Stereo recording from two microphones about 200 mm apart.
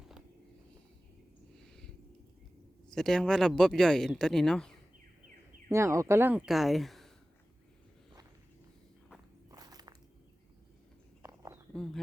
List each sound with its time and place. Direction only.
2.9 s speech: 5° left (ahead or behind)
5.7 s speech: 15° right (ahead or behind); by 7.1 s centre (ahead or behind)
9.5 s walk: 20° right (ahead or behind)
11.2 s a sound: 15° right (ahead or behind)